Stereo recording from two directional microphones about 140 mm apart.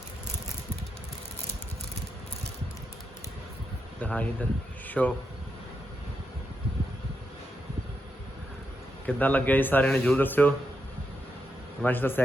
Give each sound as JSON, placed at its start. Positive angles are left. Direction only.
{"t": 4.0, "sound": "a man's voice", "side_deg": 10}
{"t": 9.0, "sound": "a man's voice", "side_deg": 10}
{"t": 11.8, "sound": "a man's voice", "side_deg": 15}